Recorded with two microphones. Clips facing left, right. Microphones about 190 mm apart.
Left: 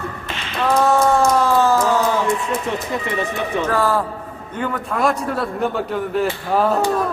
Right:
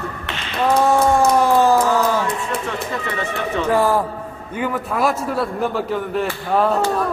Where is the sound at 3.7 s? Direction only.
15° right (ahead or behind).